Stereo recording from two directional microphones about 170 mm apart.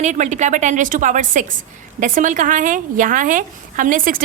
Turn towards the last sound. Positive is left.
turn(degrees=-55)  # may be behind; listen again after turning